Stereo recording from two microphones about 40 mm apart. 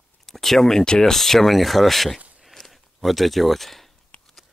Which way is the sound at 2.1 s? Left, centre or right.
Right.